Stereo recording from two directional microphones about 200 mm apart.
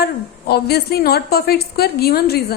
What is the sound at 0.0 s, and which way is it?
A woman's voice, 55° left (ahead or behind).